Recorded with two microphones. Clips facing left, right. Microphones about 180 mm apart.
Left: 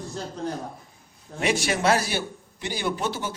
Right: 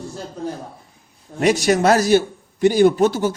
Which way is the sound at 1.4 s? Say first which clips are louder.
Right 7 dB; 40° right (ahead or behind).